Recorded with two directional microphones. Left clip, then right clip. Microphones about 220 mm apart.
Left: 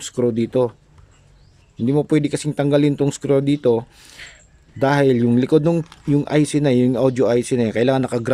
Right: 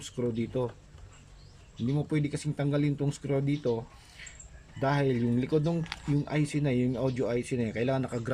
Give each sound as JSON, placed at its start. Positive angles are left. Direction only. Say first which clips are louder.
{"t": 0.0, "sound": "speech", "louder": "left 13 dB", "side_deg": 45}
{"t": 1.9, "sound": "speech", "louder": "left 14 dB", "side_deg": 45}